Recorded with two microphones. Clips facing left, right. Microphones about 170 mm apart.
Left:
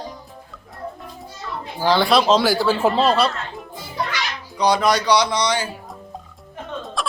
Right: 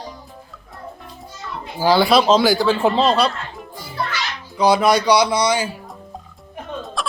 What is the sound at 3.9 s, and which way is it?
Music, 15° left (ahead or behind).